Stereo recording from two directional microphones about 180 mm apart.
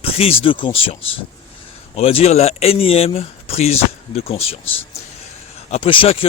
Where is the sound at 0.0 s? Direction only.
30° left (ahead or behind).